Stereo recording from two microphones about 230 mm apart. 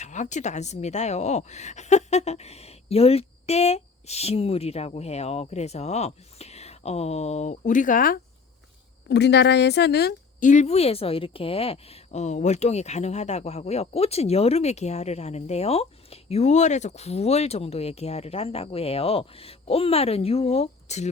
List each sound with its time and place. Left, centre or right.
0.0 s speech: left
9.0 s speech: left